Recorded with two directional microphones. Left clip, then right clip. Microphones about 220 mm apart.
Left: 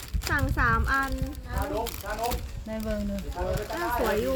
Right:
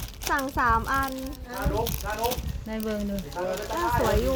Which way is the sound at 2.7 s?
40° right (ahead or behind).